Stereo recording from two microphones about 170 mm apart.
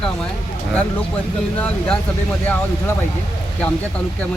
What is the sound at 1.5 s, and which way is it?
Speech, 10° left (ahead or behind).